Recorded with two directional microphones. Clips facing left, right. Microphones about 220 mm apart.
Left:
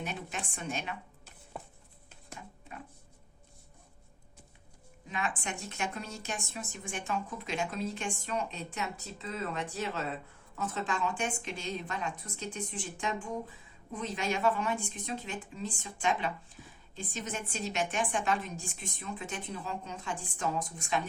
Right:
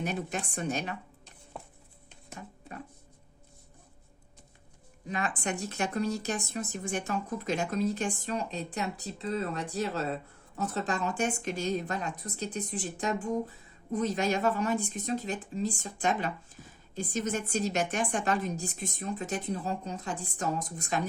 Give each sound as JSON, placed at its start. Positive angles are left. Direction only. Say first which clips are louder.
{"t": 0.0, "sound": "speech", "louder": "right 6 dB", "side_deg": -40}
{"t": 1.5, "sound": "music", "louder": "even", "side_deg": 0}
{"t": 5.0, "sound": "speech", "louder": "right 4 dB", "side_deg": -40}